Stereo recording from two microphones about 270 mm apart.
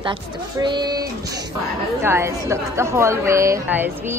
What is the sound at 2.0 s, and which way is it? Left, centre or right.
A woman's voice, centre.